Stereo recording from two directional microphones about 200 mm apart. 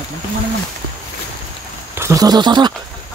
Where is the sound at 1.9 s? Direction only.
15° right (ahead or behind).